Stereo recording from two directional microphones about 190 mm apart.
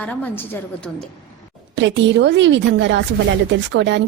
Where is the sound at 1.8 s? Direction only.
70° right (ahead or behind).